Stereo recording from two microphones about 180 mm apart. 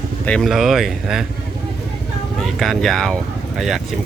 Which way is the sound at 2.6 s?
Centre (ahead or behind).